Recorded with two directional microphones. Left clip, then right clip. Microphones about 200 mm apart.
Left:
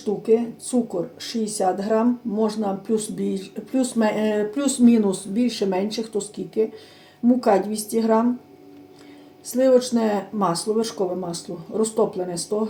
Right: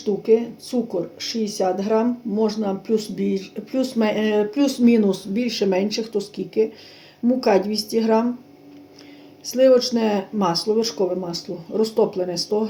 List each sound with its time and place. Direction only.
0.2 s speech: 20° right (ahead or behind)
9.5 s speech: 25° right (ahead or behind)